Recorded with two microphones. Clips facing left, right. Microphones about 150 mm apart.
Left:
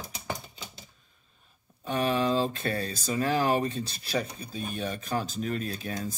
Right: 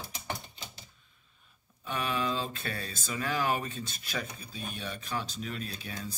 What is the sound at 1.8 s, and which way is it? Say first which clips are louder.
Speech: left 6 dB; 40° left (ahead or behind).